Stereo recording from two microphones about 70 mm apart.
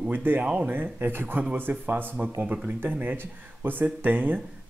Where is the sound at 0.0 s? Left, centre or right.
Right.